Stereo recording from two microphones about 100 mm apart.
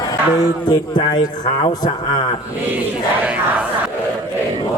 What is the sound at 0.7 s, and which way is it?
Speech, 50° left (ahead or behind).